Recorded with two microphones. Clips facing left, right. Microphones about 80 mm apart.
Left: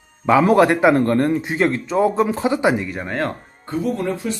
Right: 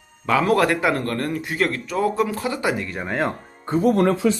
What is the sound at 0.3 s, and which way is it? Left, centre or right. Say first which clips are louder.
Speech: left 5 dB; left.